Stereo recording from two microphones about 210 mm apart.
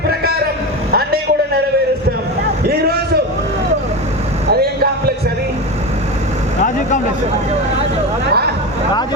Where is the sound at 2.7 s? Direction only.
50° right (ahead or behind).